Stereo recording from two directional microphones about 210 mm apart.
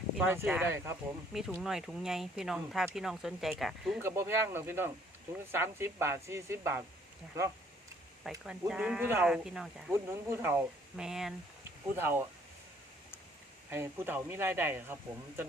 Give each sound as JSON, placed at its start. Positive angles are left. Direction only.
{"t": 0.3, "sound": "speech", "side_deg": -5}
{"t": 4.0, "sound": "speech", "side_deg": -15}
{"t": 8.2, "sound": "speech", "side_deg": 0}
{"t": 13.7, "sound": "speech", "side_deg": -10}